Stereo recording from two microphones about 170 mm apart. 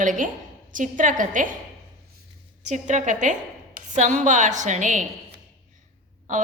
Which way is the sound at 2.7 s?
45° right (ahead or behind).